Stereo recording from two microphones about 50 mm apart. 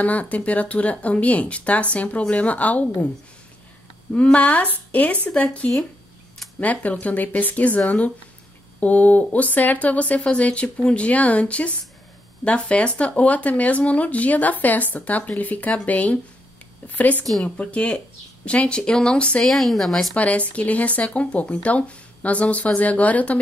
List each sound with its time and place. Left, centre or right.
0.0 s speech: left
4.1 s speech: left
19.4 s speech: centre
20.2 s speech: left